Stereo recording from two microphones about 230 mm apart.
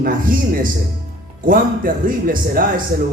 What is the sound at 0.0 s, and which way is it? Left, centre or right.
A man's voice, right.